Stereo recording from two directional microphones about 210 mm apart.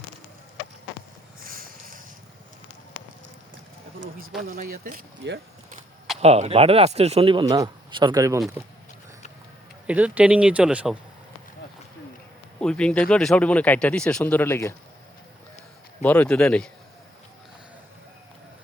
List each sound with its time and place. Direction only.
1.4 s a sound: 45° right (ahead or behind)
4.4 s speech: 40° right (ahead or behind)
6.1 s speech: 30° right (ahead or behind)
9.8 s speech: 5° right (ahead or behind)
12.5 s speech: 5° left (ahead or behind)
16.0 s speech: 5° left (ahead or behind)